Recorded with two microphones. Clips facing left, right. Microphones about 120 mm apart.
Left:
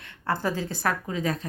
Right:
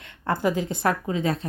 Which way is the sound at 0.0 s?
20° right (ahead or behind).